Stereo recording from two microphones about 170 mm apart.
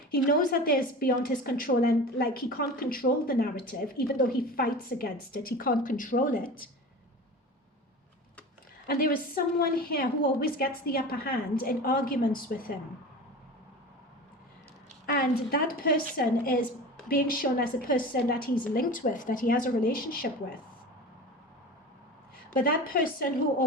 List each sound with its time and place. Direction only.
0.3 s a woman's voice: 60° left (ahead or behind)
8.9 s a woman's voice: 60° left (ahead or behind)
15.0 s a woman's voice: 60° left (ahead or behind)
22.4 s a woman's voice: 60° left (ahead or behind)